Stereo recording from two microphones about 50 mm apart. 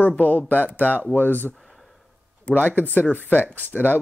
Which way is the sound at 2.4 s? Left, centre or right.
Left.